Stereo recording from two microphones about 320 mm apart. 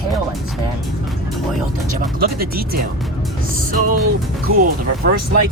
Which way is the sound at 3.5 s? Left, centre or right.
Right.